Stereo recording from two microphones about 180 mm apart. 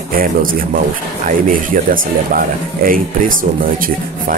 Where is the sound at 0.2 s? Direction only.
50° right (ahead or behind).